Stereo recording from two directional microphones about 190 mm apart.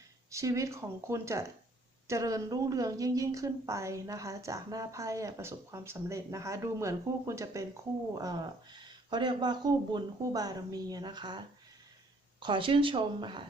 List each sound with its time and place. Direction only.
0.3 s a woman's voice: 15° right (ahead or behind)
9.0 s a woman's voice: 25° right (ahead or behind)